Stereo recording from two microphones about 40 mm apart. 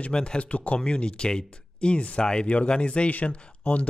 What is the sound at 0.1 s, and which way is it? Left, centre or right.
Speech, left.